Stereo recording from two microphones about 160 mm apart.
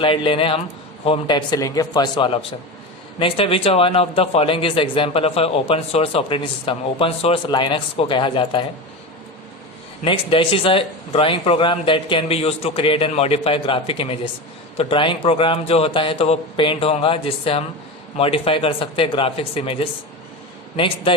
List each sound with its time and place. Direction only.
0.0 s a man's voice: 35° left (ahead or behind)
10.0 s speech: 35° left (ahead or behind)